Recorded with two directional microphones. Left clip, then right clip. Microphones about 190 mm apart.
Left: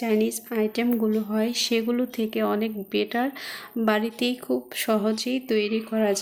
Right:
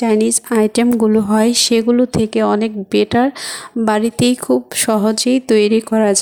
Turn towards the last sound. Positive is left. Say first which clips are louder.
# right 10 dB
turn(degrees=-50)  # may be behind; listen again after turning